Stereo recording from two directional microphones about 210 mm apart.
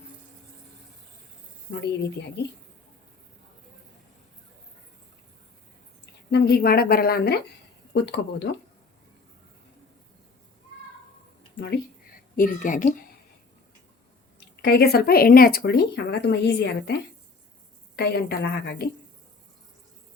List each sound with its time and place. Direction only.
1.7 s speech: 55° left (ahead or behind)
6.3 s speech: 45° left (ahead or behind)
12.4 s a woman's voice: 40° left (ahead or behind)
14.3 s speech: 50° left (ahead or behind)